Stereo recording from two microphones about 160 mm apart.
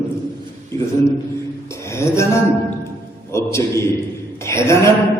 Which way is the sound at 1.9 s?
15° left (ahead or behind).